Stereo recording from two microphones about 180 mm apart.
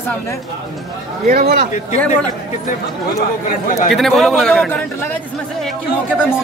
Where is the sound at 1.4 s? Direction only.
60° right (ahead or behind).